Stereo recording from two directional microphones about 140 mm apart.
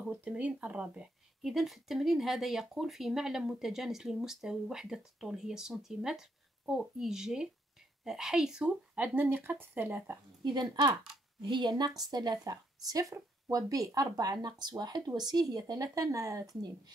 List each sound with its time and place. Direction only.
0.0 s speech: 10° right (ahead or behind)
10.4 s speech: 30° right (ahead or behind)